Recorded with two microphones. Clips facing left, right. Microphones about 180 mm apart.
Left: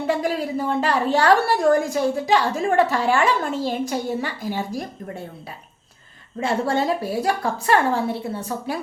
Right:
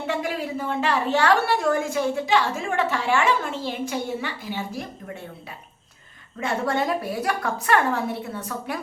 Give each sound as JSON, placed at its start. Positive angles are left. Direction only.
{"t": 0.1, "sound": "a woman's voice", "side_deg": 35}
{"t": 6.4, "sound": "a woman's voice", "side_deg": 30}